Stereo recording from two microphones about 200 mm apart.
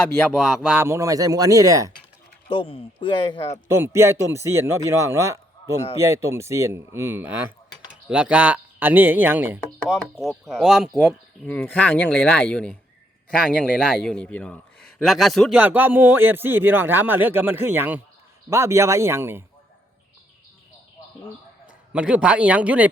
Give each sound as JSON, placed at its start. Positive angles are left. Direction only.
{"t": 0.3, "sound": "a man's voice", "side_deg": -5}
{"t": 2.5, "sound": "speech", "side_deg": 25}
{"t": 3.7, "sound": "a man's voice", "side_deg": -15}
{"t": 11.4, "sound": "a man's voice", "side_deg": 10}
{"t": 21.9, "sound": "a man's voice", "side_deg": -5}